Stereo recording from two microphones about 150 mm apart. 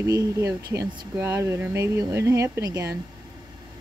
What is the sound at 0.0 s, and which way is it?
Speech, 20° right (ahead or behind).